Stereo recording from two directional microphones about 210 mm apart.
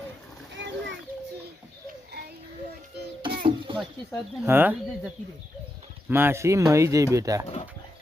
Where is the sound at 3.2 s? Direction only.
45° right (ahead or behind).